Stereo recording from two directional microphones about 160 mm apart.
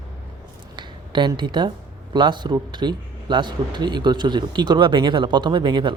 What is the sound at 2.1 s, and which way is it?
A man's voice, 30° right (ahead or behind).